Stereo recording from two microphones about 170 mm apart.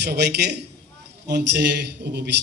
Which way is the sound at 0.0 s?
75° right (ahead or behind).